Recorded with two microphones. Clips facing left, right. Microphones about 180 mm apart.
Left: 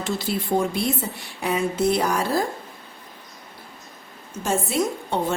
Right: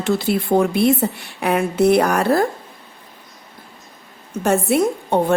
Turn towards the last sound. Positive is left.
turn(degrees=-60)  # may be behind; listen again after turning